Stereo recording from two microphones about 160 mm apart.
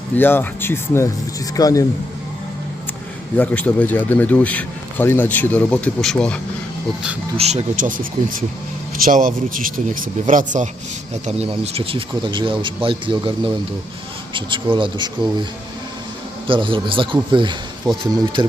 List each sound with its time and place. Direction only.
0.2 s a man's voice: 15° left (ahead or behind)
3.3 s speech: 10° left (ahead or behind)
7.3 s speech: 45° right (ahead or behind)
11.1 s speech: 40° right (ahead or behind)
16.5 s speech: 30° right (ahead or behind)